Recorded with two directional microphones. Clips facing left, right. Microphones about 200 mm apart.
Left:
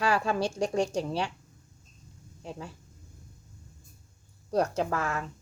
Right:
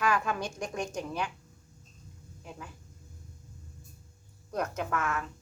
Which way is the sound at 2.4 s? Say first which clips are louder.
Left 6 dB; 30° left (ahead or behind).